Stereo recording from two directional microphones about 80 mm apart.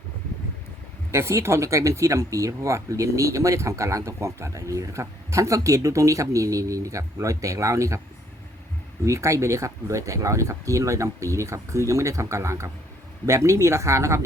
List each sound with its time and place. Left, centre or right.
1.1 s speech: right
9.0 s speech: right